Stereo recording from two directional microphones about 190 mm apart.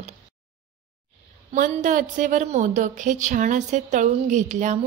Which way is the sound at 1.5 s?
40° right (ahead or behind).